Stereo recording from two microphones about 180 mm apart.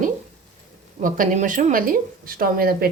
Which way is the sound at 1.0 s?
45° right (ahead or behind).